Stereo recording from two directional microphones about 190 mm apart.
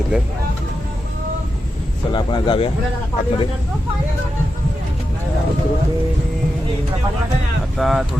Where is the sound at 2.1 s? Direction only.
25° left (ahead or behind).